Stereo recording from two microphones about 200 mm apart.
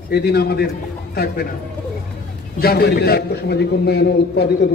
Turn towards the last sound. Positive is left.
turn(degrees=55)  # may be behind; listen again after turning